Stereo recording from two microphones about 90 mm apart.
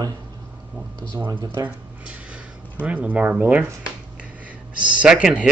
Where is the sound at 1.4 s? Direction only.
45° right (ahead or behind).